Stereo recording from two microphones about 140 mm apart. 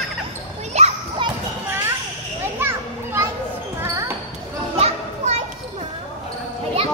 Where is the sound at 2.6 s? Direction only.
15° right (ahead or behind).